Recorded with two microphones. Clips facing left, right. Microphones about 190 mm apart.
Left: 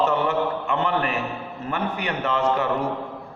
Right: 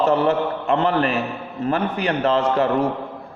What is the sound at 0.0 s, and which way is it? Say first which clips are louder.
A man's voice: right 4 dB; 35° right (ahead or behind).